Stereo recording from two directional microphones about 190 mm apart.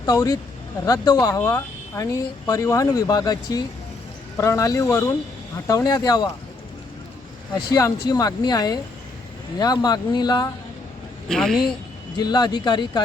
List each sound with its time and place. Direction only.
0.0 s speech: 20° left (ahead or behind)
7.7 s speech: 20° left (ahead or behind)
11.3 s a woman's voice: 5° left (ahead or behind)
12.1 s speech: 20° left (ahead or behind)